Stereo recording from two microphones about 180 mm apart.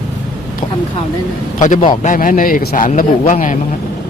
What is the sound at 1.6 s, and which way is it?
A man's voice, 45° left (ahead or behind).